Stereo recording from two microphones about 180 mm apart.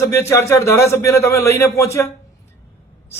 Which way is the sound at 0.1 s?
15° left (ahead or behind).